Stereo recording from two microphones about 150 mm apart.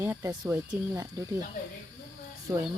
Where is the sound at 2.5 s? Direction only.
10° right (ahead or behind).